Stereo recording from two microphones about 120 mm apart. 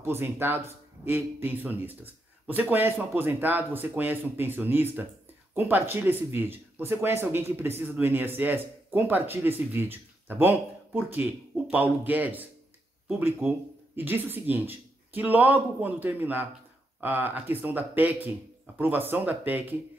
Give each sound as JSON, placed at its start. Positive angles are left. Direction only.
{"t": 0.0, "sound": "speech", "side_deg": -20}
{"t": 13.9, "sound": "speech", "side_deg": -15}